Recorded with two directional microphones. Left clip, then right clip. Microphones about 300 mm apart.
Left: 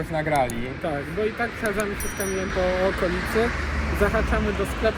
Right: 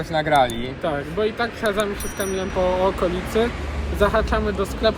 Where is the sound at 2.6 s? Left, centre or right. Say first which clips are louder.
Right 3 dB; centre.